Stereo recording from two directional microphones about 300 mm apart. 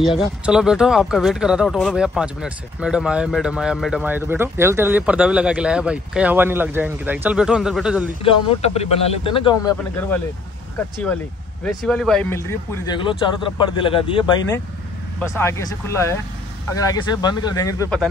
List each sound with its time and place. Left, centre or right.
0.0 s speech: centre
8.2 s a man's voice: centre
11.6 s a man's voice: centre